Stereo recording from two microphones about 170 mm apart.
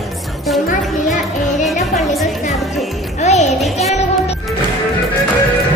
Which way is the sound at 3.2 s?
40° left (ahead or behind).